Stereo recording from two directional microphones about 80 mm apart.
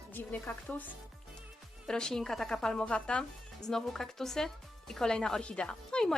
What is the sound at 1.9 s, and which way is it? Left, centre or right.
A woman's voice, centre.